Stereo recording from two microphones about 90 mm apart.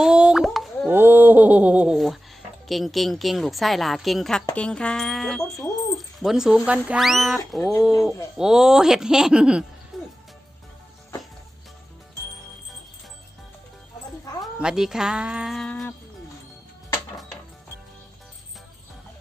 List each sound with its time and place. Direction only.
0.0 s plop: 10° right (ahead or behind)
0.4 s plop: centre (ahead or behind)
0.9 s a sound: 20° right (ahead or behind)
2.6 s a woman's voice: centre (ahead or behind)
4.5 s a sound: 10° left (ahead or behind)
5.5 s speech: centre (ahead or behind)
7.0 s a woman's voice: centre (ahead or behind)
9.9 s music: centre (ahead or behind)
14.4 s speech: 5° right (ahead or behind)
15.5 s a sound: 5° left (ahead or behind)